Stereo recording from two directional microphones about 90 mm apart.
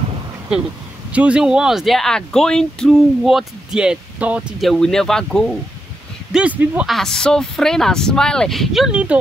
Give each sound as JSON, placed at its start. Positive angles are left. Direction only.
{"t": 1.1, "sound": "speech", "side_deg": -10}
{"t": 4.6, "sound": "speech", "side_deg": 0}
{"t": 6.3, "sound": "speech", "side_deg": -15}
{"t": 6.9, "sound": "speech", "side_deg": 5}